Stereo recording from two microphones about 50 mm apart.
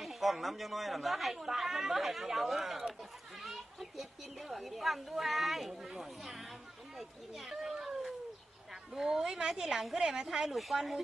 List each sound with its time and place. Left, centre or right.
0.0 s a child's voice: centre